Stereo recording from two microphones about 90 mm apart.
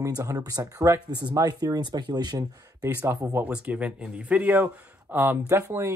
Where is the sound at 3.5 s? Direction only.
15° right (ahead or behind).